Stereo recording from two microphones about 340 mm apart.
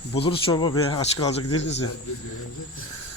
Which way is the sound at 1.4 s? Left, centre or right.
Left.